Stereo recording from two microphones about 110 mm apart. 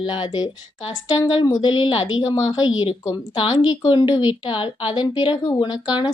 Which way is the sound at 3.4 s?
45° left (ahead or behind).